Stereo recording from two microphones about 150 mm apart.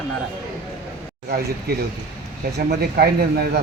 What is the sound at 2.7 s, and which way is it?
Speech, 90° right.